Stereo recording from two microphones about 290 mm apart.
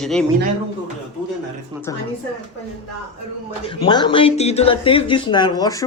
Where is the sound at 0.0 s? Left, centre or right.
Centre.